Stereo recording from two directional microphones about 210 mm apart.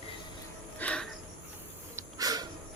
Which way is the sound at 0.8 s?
5° left (ahead or behind).